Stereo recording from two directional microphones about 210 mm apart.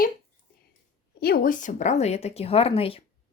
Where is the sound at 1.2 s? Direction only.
45° left (ahead or behind).